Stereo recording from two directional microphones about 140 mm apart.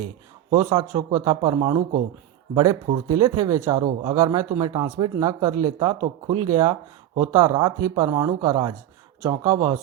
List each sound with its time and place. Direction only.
0.5 s a man's voice: 30° right (ahead or behind)